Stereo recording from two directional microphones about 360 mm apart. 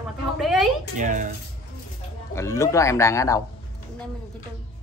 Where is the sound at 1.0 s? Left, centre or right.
Right.